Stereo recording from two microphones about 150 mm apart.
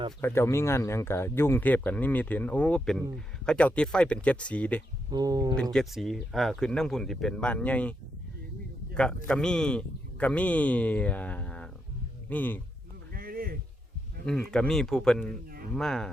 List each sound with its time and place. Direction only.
0.2 s speech: 15° left (ahead or behind)
5.1 s speech: 25° right (ahead or behind)
5.7 s speech: centre (ahead or behind)
9.0 s speech: 5° left (ahead or behind)
13.1 s a sound: 80° right
14.3 s speech: 5° left (ahead or behind)